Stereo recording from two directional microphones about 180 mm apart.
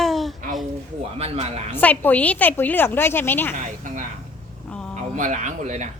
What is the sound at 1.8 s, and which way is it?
A woman's voice, 10° left (ahead or behind).